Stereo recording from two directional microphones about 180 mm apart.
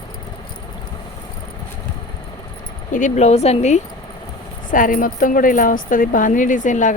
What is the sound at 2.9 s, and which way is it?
Speech, 40° left (ahead or behind).